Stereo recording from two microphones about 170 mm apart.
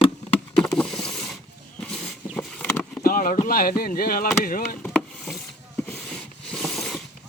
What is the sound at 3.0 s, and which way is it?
Speech, 55° left (ahead or behind).